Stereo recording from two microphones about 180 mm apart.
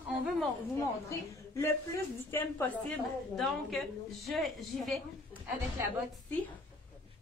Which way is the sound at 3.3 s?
Centre (ahead or behind).